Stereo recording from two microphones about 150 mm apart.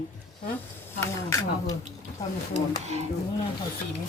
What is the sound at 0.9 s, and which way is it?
Speech, 20° left (ahead or behind).